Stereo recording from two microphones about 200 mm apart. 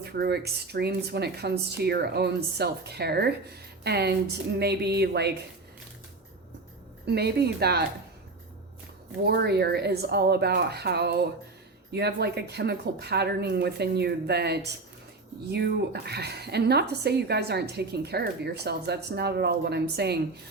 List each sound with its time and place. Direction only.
0.0 s speech: 55° right (ahead or behind)
7.1 s speech: 55° right (ahead or behind)
9.2 s speech: 55° right (ahead or behind)